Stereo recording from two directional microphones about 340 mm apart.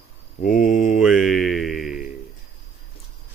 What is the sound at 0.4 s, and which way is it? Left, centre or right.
Speech, left.